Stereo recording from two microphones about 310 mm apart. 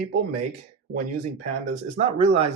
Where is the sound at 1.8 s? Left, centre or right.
Right.